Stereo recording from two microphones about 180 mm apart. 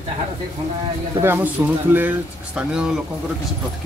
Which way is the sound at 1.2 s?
10° right (ahead or behind).